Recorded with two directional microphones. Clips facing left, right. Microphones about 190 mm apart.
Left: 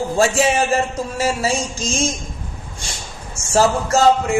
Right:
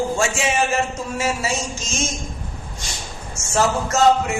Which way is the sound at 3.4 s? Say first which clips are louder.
Right 1 dB; 30° left (ahead or behind).